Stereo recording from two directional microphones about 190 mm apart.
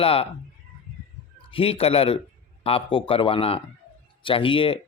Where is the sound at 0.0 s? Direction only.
30° left (ahead or behind).